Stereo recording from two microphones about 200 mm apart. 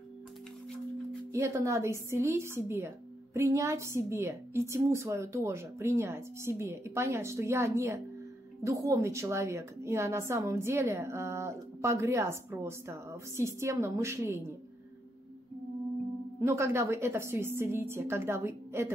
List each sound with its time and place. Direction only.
1.3 s a woman's voice: 15° right (ahead or behind)
16.3 s a woman's voice: 15° right (ahead or behind)